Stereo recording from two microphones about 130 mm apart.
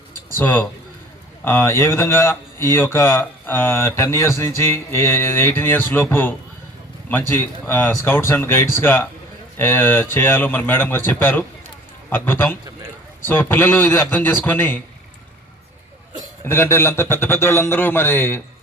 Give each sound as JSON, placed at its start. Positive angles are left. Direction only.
{"t": 0.3, "sound": "speech", "side_deg": 15}
{"t": 16.4, "sound": "speech", "side_deg": 20}